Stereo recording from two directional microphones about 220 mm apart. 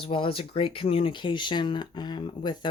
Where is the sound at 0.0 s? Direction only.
25° left (ahead or behind).